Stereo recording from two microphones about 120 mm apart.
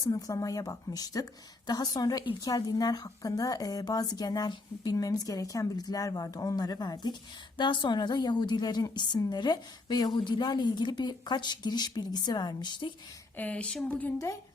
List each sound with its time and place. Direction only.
0.0 s a woman's voice: 30° left (ahead or behind)
13.3 s speech: 15° left (ahead or behind)